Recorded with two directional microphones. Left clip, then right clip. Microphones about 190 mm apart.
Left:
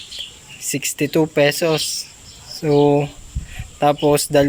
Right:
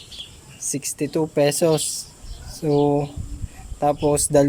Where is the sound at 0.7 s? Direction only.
5° right (ahead or behind).